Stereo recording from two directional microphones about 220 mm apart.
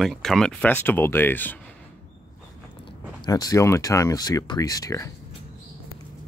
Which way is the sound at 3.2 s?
15° left (ahead or behind).